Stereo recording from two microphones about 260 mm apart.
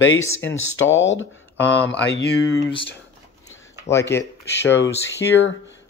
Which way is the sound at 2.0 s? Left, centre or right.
Left.